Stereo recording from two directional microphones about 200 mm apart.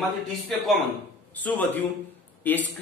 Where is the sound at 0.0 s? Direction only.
Centre (ahead or behind).